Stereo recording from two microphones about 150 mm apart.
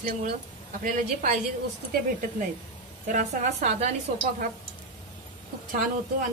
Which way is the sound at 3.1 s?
55° right (ahead or behind).